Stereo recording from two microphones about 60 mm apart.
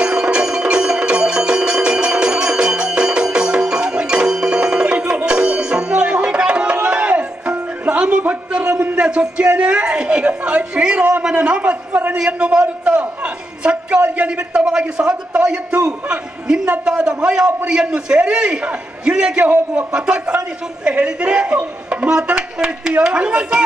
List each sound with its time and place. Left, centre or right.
0.0 s music: centre
8.7 s a sound: right
9.0 s a man's voice: centre